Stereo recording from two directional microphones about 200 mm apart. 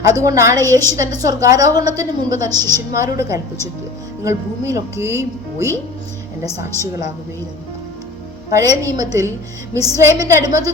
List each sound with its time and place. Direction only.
0.2 s a woman's voice: 15° right (ahead or behind)
8.4 s a woman's voice: 15° right (ahead or behind)